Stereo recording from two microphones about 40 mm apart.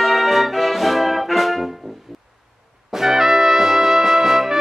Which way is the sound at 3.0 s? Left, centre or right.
Centre.